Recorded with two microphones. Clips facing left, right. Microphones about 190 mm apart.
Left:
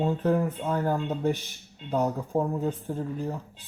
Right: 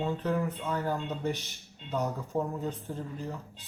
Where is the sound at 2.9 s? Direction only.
45° left (ahead or behind).